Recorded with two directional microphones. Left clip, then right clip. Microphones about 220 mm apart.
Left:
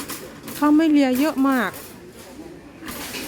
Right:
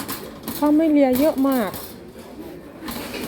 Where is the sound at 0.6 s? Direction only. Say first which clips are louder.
Even; 25° left (ahead or behind).